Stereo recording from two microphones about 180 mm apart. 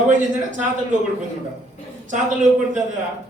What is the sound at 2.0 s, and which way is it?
Speech, 45° right (ahead or behind).